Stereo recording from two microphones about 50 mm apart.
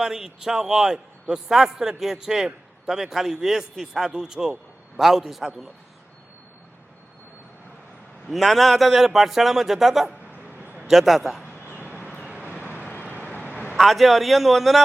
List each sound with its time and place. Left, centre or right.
0.0 s a man's voice: centre
8.3 s a man's voice: centre
10.5 s a sound: right
10.8 s a man's voice: centre
11.8 s vehicle: right
13.7 s a man's voice: centre